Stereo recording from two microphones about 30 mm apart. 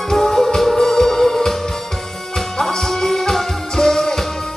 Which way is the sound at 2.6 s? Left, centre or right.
Centre.